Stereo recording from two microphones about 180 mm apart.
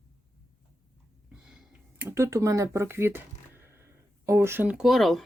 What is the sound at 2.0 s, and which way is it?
Speech, 15° right (ahead or behind).